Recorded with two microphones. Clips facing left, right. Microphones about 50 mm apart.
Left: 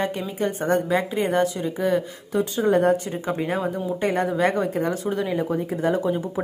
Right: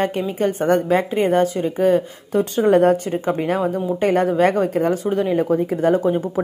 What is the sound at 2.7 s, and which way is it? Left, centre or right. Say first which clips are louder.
Speech: right 5 dB; right.